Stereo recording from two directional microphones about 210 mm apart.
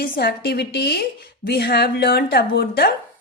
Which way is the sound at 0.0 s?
45° left (ahead or behind).